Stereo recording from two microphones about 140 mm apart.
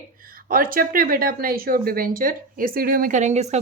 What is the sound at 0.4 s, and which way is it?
A woman's voice, 90° right.